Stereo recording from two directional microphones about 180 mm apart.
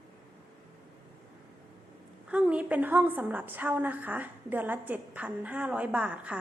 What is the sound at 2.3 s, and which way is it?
A woman's voice, 5° right (ahead or behind).